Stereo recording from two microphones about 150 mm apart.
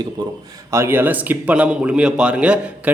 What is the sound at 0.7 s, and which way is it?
A man's voice, 15° right (ahead or behind).